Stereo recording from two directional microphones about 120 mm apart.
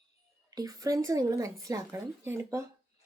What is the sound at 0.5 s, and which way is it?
Speech, 30° right (ahead or behind).